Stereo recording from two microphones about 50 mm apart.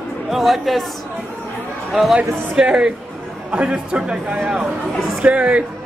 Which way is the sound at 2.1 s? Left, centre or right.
Centre.